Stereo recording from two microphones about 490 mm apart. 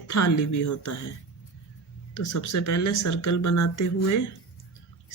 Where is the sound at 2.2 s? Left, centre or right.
Left.